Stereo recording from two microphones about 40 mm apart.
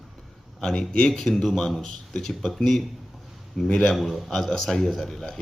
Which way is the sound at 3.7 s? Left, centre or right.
Centre.